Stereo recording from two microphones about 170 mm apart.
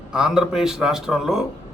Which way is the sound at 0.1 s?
5° right (ahead or behind).